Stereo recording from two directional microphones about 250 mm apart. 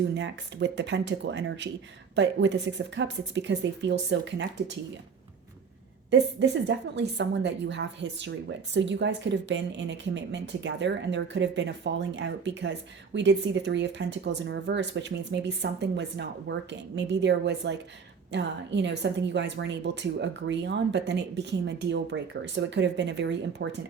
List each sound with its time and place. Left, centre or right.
0.1 s a woman's voice: right
6.1 s a woman's voice: right